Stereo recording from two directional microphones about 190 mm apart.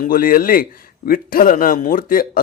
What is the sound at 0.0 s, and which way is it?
A man's voice, 50° left (ahead or behind).